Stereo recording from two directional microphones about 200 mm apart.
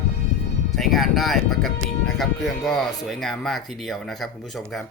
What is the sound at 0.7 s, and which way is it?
Speech, centre (ahead or behind).